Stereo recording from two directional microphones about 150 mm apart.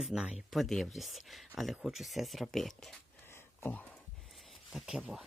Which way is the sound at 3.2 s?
15° left (ahead or behind).